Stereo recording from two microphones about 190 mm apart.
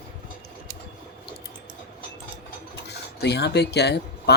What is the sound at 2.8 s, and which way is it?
Speech, 60° left (ahead or behind).